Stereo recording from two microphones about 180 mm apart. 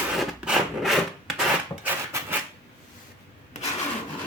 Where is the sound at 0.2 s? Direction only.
Centre (ahead or behind).